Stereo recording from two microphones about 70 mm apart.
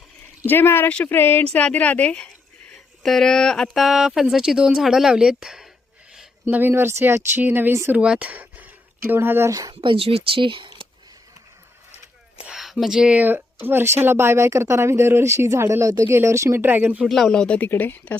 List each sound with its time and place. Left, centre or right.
0.4 s speech: left
0.9 s a woman's voice: left
2.7 s speech: centre
3.8 s speech: centre
6.5 s speech: right
7.9 s speech: centre; by 9.5 s right
9.5 s speech: right
12.5 s a sound: centre
12.7 s speech: centre
13.1 s speech: right
16.6 s speech: right
17.1 s speech: centre
17.3 s speech: centre
17.6 s a woman's voice: left